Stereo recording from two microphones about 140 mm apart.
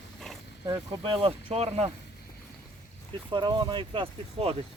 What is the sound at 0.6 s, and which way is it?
Speech, 30° right (ahead or behind).